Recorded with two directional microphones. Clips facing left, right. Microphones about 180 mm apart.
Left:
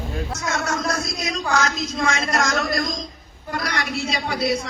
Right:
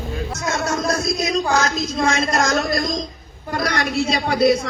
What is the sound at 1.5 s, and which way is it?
A woman's voice, 30° right (ahead or behind).